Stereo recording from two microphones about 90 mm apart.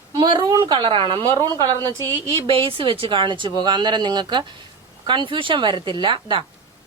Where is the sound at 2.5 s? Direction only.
85° right; by 3.5 s 65° right (ahead or behind).